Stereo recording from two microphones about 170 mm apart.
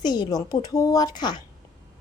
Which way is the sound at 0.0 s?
25° left (ahead or behind).